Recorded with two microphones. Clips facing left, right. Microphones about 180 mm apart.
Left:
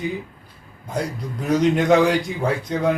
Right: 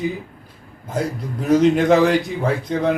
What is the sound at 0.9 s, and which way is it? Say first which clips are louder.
A man's voice: right 2 dB; 5° right (ahead or behind).